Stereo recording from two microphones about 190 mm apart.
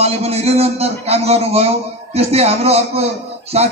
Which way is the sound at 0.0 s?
35° right (ahead or behind).